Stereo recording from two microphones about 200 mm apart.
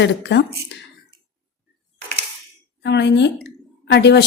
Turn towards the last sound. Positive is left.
turn(degrees=55)  # may be behind; listen again after turning